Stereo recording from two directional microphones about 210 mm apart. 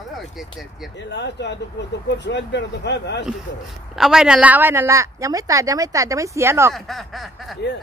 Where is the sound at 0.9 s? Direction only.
55° left (ahead or behind).